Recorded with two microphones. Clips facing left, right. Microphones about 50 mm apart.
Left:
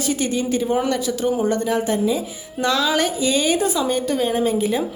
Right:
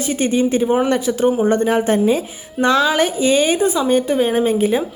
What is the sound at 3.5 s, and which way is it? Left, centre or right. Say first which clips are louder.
A woman's voice: right 4 dB; centre.